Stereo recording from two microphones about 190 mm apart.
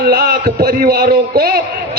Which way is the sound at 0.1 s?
55° right (ahead or behind).